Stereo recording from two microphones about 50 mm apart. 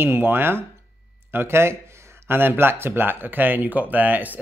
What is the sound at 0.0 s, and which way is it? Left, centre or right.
A man's voice, right.